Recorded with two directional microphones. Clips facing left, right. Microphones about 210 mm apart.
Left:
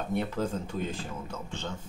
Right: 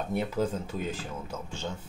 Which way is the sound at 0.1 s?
5° right (ahead or behind).